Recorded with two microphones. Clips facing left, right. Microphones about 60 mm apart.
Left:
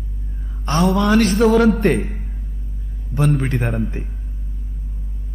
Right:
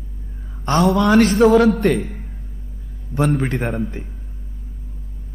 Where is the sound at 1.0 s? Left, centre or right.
Right.